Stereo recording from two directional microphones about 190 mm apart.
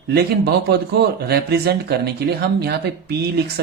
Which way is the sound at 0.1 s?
55° right (ahead or behind).